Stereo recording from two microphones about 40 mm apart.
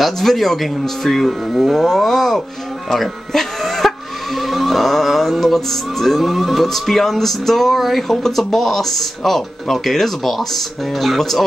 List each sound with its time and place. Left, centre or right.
0.0 s music: centre
2.9 s speech: centre
4.4 s music: centre